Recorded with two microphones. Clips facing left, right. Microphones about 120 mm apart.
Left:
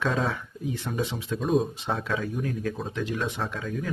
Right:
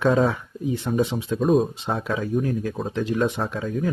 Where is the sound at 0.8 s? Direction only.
20° right (ahead or behind).